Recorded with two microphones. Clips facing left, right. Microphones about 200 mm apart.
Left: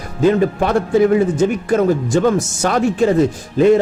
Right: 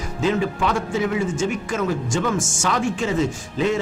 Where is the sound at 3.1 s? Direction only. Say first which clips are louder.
Left 7 dB; 55° left (ahead or behind).